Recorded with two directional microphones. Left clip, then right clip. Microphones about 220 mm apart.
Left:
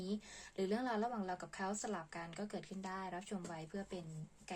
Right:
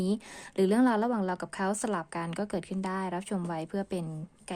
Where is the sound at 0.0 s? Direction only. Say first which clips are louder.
Right 12 dB; 50° right (ahead or behind).